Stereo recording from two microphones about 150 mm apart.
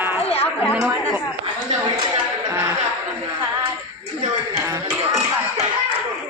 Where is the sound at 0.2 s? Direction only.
40° left (ahead or behind).